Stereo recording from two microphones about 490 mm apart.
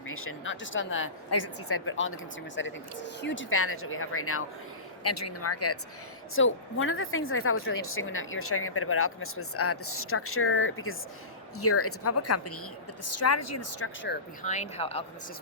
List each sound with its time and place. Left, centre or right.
0.1 s speech: left